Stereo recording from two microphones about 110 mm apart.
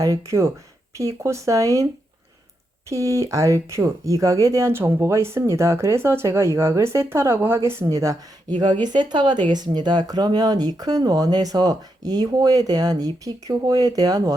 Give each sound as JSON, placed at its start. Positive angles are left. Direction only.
{"t": 0.0, "sound": "speech", "side_deg": -30}
{"t": 2.9, "sound": "speech", "side_deg": -30}